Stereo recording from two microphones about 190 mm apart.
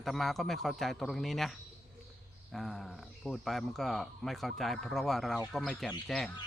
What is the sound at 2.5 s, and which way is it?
Speech, centre (ahead or behind).